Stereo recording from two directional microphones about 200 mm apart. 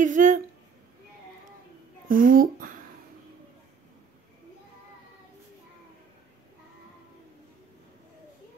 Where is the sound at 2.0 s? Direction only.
45° right (ahead or behind).